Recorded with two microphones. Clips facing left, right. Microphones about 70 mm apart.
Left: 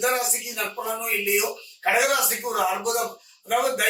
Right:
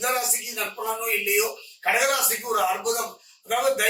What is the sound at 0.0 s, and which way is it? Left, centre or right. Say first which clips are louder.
Speech: left 2 dB; centre.